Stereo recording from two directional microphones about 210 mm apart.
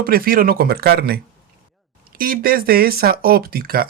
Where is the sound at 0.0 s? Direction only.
45° right (ahead or behind).